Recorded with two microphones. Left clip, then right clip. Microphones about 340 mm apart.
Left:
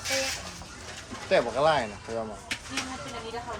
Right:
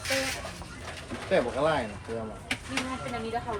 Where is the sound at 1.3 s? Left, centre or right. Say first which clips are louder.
Left 3 dB; left.